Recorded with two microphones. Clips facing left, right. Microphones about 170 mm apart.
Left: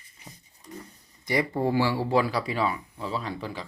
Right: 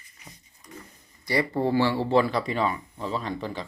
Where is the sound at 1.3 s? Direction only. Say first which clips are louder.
Right 1 dB; 15° left (ahead or behind).